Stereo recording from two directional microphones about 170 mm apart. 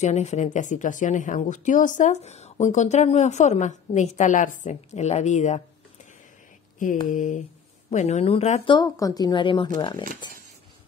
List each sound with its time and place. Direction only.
0.0 s speech: 40° left (ahead or behind)
7.1 s speech: 50° left (ahead or behind)
8.7 s a woman's voice: 20° left (ahead or behind)